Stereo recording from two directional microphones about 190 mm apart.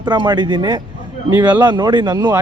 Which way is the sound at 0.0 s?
25° right (ahead or behind).